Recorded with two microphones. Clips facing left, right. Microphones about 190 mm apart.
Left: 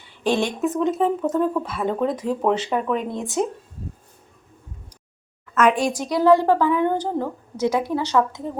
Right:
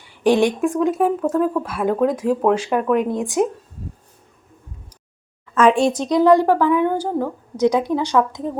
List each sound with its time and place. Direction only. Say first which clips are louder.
0.2 s speech: right 5 dB; 15° right (ahead or behind)
5.5 s speech: right 4 dB; 30° right (ahead or behind)